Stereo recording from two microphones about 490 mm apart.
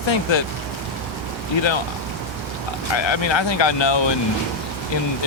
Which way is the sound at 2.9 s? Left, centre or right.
Left.